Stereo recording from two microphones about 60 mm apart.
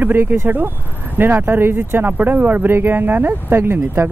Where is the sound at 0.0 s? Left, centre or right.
Right.